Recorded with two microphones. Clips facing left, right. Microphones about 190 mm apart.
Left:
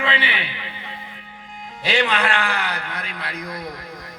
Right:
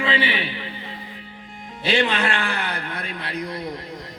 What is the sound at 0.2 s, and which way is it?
Speech, 40° right (ahead or behind).